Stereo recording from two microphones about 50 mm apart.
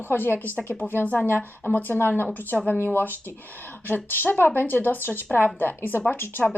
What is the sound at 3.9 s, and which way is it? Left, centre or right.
Speech, left.